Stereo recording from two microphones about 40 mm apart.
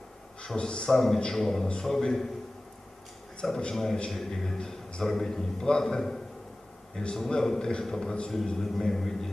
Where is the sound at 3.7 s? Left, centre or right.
Centre.